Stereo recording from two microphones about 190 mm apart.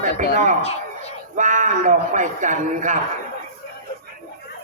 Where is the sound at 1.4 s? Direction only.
40° right (ahead or behind).